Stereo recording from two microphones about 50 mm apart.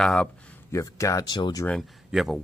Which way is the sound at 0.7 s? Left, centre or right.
Left.